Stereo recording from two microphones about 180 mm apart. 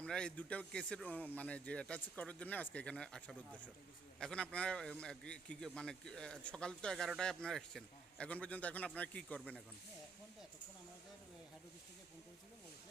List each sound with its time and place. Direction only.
0.0 s a man's voice: 5° left (ahead or behind)